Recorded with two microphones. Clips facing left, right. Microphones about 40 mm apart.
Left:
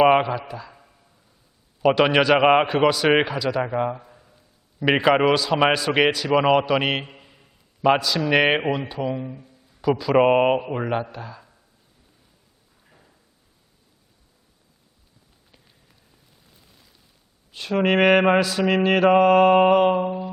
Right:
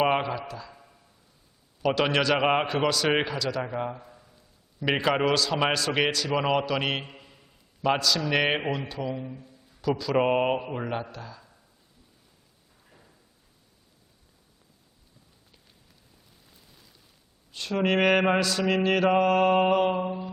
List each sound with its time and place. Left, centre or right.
0.0 s mantra: left
0.3 s a sound: centre
1.8 s mantra: centre
2.8 s a man's voice: left
7.1 s a sound: centre
8.6 s mantra: centre
11.1 s a man's voice: centre
12.9 s a sound: centre
17.5 s mantra: centre